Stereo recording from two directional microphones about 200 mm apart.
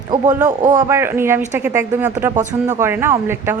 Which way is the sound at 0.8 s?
10° right (ahead or behind).